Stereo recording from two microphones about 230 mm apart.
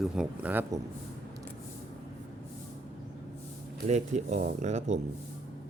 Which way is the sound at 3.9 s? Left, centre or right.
Right.